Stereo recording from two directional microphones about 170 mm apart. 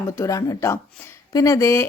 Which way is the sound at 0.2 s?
20° left (ahead or behind).